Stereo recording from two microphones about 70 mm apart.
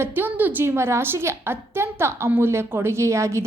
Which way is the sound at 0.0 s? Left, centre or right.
Right.